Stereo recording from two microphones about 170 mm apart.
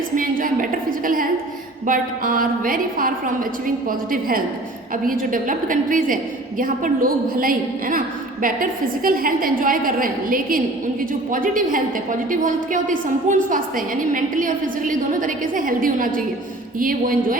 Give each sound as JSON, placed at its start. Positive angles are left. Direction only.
{"t": 0.2, "sound": "a woman's voice", "side_deg": -55}